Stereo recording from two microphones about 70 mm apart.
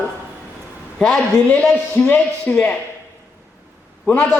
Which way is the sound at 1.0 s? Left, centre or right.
Centre.